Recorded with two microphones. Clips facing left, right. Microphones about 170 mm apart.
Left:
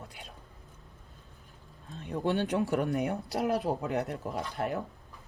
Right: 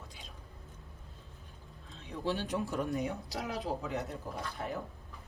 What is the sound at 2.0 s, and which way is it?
Speech, 60° left (ahead or behind).